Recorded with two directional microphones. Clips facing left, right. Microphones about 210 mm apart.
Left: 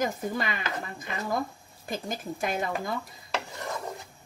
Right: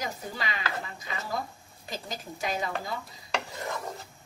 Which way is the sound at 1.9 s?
55° left (ahead or behind).